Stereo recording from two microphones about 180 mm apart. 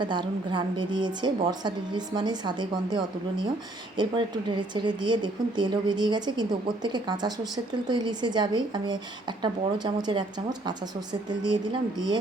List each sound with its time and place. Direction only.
0.0 s speech: 25° right (ahead or behind)